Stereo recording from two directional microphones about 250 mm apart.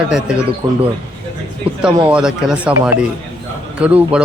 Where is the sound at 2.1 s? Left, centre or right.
Centre.